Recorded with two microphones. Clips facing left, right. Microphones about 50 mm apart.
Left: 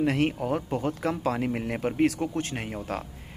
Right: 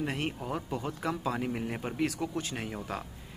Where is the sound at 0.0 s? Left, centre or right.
Left.